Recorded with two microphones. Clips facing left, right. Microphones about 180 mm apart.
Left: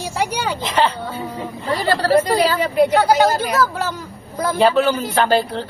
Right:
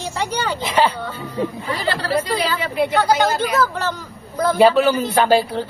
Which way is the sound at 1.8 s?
45° left (ahead or behind).